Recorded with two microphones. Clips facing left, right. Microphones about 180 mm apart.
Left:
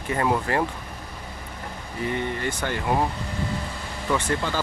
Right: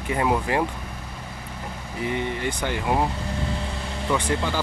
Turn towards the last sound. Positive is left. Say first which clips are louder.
# right 1 dB
turn(degrees=-15)  # may be behind; listen again after turning